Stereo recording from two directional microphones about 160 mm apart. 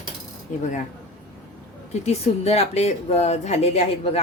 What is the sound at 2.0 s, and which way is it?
Speech, 40° left (ahead or behind).